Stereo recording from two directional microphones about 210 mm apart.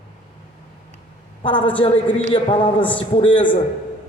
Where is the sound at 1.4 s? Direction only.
25° left (ahead or behind).